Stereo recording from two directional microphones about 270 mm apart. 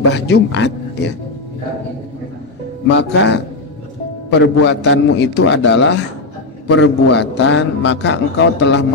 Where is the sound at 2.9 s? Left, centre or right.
Left.